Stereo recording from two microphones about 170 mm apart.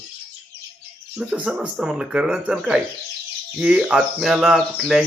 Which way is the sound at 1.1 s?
5° right (ahead or behind).